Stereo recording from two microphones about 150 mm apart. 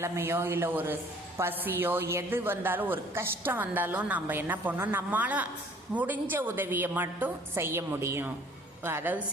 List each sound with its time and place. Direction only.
0.0 s a woman's voice: 15° right (ahead or behind)